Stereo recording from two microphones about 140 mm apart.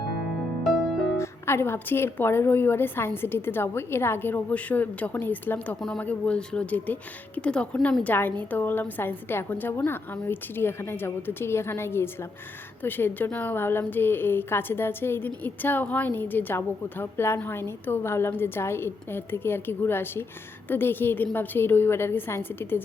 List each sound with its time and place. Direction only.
1.2 s a woman's voice: 20° left (ahead or behind)